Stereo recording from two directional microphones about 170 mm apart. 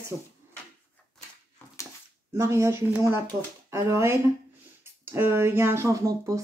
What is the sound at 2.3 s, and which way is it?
Speech, 15° right (ahead or behind).